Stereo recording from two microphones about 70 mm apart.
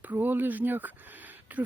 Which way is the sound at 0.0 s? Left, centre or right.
Right.